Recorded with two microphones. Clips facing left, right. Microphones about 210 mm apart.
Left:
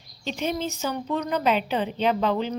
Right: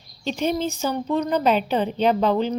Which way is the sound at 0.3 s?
35° right (ahead or behind).